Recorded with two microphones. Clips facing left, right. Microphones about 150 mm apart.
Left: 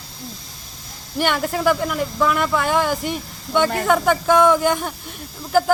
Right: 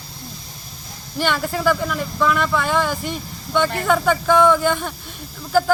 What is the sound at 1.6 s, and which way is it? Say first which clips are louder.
Speech: left 1 dB; 10° left (ahead or behind).